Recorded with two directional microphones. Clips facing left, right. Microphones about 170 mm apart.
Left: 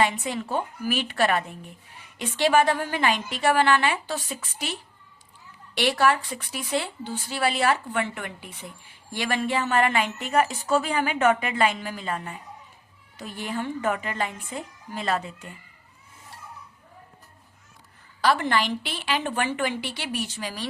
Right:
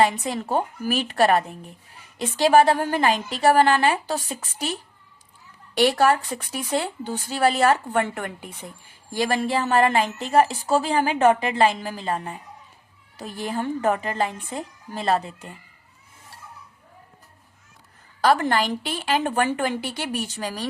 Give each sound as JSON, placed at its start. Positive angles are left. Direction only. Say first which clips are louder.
{"t": 0.0, "sound": "a woman's voice", "louder": "right 3 dB", "side_deg": -40}
{"t": 18.2, "sound": "speech", "louder": "right 3 dB", "side_deg": -45}